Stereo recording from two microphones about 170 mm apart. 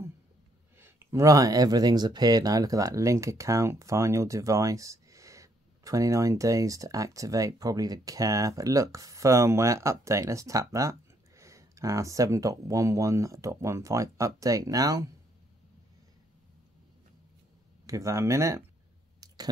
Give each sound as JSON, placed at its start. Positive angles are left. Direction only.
{"t": 0.7, "sound": "speech", "side_deg": -15}
{"t": 17.8, "sound": "speech", "side_deg": -20}
{"t": 19.1, "sound": "clicking", "side_deg": -20}